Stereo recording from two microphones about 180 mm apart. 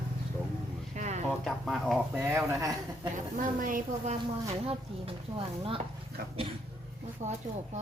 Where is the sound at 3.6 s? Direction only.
50° right (ahead or behind).